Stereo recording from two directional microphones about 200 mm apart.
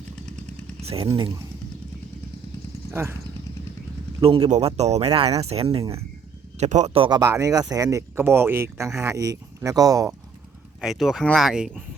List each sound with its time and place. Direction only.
0.9 s speech: 25° right (ahead or behind)
2.9 s speech: 10° right (ahead or behind)
4.2 s speech: 25° right (ahead or behind)
10.8 s speech: centre (ahead or behind)